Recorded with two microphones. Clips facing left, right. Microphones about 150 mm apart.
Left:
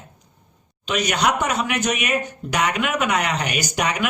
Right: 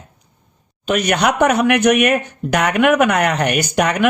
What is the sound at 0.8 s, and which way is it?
Speech, 55° right (ahead or behind).